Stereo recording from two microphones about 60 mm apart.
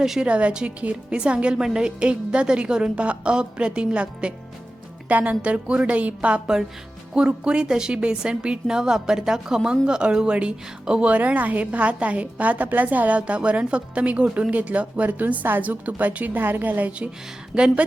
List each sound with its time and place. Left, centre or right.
0.0 s a woman's voice: centre
0.3 s a woman's voice: centre
17.5 s a woman's voice: centre